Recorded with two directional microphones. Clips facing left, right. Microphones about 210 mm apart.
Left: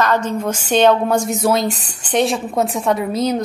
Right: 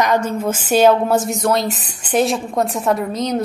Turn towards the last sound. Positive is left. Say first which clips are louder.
# left 1 dB
turn(degrees=5)  # may be behind; listen again after turning